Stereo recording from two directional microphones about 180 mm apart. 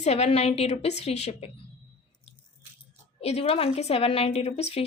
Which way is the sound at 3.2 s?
35° left (ahead or behind).